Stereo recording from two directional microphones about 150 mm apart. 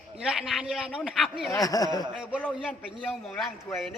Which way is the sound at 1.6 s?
25° left (ahead or behind).